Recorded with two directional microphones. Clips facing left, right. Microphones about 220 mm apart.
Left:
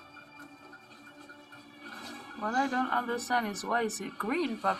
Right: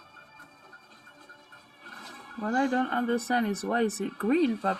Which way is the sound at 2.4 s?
25° right (ahead or behind).